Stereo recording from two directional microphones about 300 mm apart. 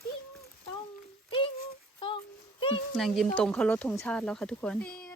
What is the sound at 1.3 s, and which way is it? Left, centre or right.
Child singing, centre.